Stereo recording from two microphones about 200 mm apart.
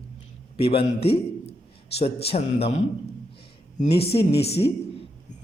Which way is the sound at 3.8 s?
30° left (ahead or behind).